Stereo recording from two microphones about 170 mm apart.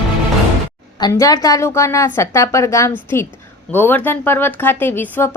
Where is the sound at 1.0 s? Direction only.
20° left (ahead or behind).